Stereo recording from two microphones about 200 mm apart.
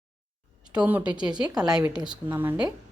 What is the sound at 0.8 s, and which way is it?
Speech, 10° right (ahead or behind).